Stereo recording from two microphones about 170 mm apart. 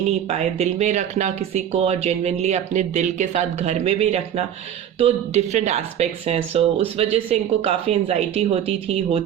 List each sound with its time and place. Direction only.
0.1 s speech: 40° right (ahead or behind)